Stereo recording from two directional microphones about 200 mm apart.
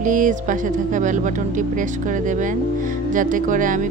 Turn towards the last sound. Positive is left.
turn(degrees=-40)  # may be behind; listen again after turning